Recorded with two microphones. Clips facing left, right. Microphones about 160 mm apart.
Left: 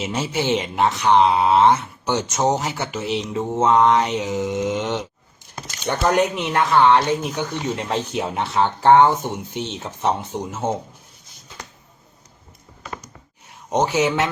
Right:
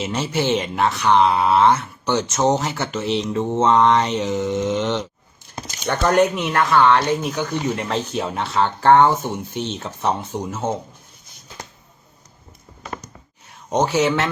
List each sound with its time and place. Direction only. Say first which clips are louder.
0.0 s speech: right 1 dB; 5° left (ahead or behind)
13.7 s speech: right 1 dB; 15° left (ahead or behind)